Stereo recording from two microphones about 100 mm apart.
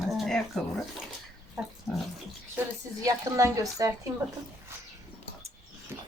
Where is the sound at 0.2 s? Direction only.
5° left (ahead or behind).